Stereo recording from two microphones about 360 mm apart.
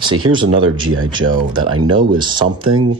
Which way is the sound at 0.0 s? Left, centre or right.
Centre.